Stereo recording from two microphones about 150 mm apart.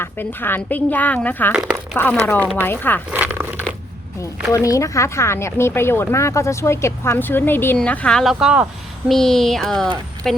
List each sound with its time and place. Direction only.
0.0 s speech: 15° left (ahead or behind)
1.5 s speech: 5° right (ahead or behind)
2.2 s speech: 10° left (ahead or behind)
3.1 s speech: 10° right (ahead or behind)
4.2 s speech: 20° left (ahead or behind); by 10.4 s centre (ahead or behind)